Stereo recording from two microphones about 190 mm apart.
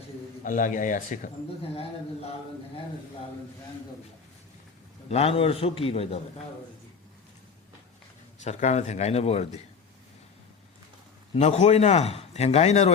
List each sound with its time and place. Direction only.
0.4 s speech: 40° left (ahead or behind)
1.7 s a man's voice: 30° left (ahead or behind)
5.0 s a man's voice: 35° left (ahead or behind)
8.4 s a man's voice: 40° left (ahead or behind)
11.3 s a man's voice: 35° left (ahead or behind)